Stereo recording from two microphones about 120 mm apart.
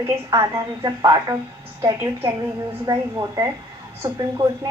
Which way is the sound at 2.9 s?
30° right (ahead or behind).